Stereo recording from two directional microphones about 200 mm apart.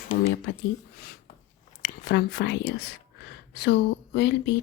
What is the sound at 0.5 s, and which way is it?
Speech, 65° left (ahead or behind).